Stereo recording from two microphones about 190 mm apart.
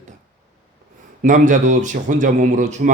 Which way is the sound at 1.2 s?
40° right (ahead or behind).